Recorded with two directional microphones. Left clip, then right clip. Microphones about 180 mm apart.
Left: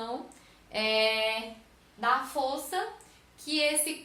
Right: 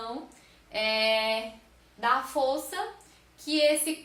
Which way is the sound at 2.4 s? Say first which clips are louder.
Right 4 dB; 15° right (ahead or behind).